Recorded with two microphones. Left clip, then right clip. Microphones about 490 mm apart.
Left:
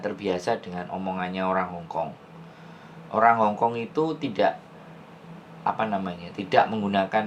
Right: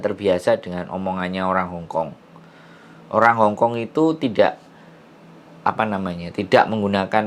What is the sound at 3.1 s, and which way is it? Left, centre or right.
Speech, right.